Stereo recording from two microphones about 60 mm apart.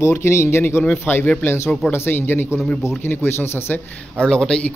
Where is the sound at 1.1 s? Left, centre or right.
Left.